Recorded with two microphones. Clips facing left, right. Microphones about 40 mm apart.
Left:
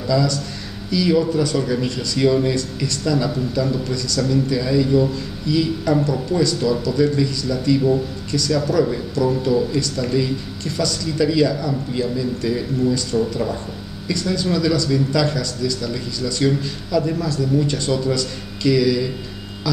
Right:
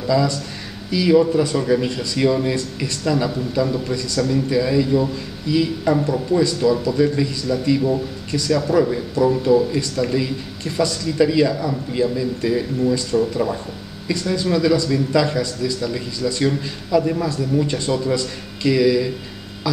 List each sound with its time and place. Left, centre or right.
0.0 s a man's voice: centre